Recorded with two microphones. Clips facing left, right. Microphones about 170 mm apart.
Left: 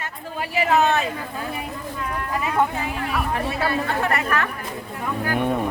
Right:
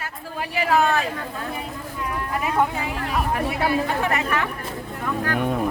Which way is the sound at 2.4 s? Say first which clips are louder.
Even; centre (ahead or behind).